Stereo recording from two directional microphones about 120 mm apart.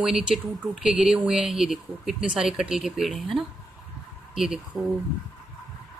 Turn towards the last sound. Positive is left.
turn(degrees=-5)  # may be behind; listen again after turning